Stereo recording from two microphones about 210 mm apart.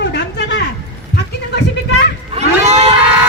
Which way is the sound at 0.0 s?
55° left (ahead or behind).